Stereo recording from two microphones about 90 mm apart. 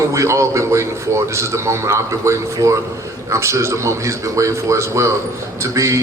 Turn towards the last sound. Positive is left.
turn(degrees=-35)  # may be behind; listen again after turning